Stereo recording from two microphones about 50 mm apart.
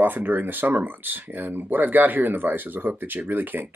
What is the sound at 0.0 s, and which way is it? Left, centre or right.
Speech, right.